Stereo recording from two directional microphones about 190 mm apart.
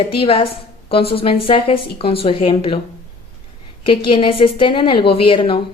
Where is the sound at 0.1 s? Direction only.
30° left (ahead or behind).